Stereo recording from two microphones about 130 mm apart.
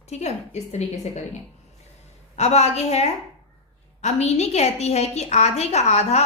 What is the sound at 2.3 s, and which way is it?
A woman's voice, 55° left (ahead or behind).